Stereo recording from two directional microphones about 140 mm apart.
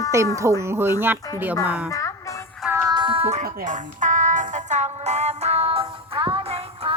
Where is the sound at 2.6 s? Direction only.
15° right (ahead or behind).